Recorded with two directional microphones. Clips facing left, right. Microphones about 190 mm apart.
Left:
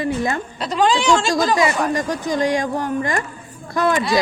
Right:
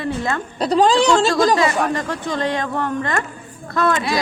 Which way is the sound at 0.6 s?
35° right (ahead or behind).